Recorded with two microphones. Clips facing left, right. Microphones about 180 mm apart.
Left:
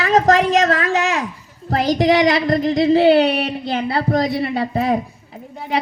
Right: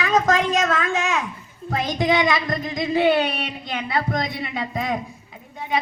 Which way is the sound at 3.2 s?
70° left (ahead or behind).